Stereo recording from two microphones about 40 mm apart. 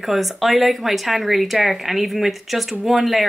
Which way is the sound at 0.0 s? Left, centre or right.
Centre.